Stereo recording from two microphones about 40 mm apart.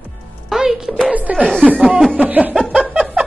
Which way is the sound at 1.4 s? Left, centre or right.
Centre.